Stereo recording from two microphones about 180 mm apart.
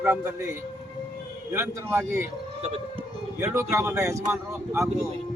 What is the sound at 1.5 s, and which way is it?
Speech, 15° right (ahead or behind).